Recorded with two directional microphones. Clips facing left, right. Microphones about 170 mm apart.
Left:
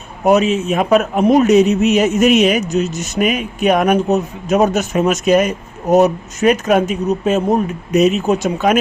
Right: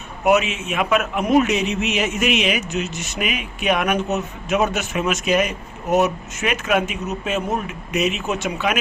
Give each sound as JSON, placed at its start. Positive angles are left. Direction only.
{"t": 0.3, "sound": "a man's voice", "side_deg": 35}